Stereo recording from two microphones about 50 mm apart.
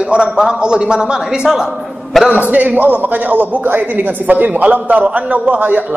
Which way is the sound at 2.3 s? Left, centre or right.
Right.